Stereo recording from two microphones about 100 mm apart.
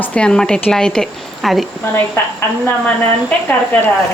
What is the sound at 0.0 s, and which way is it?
A woman's voice, 10° left (ahead or behind).